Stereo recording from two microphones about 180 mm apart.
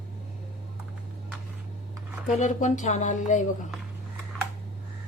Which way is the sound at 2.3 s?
40° left (ahead or behind).